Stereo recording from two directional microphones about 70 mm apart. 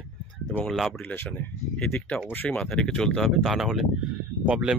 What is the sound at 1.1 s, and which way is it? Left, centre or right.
Speech, left.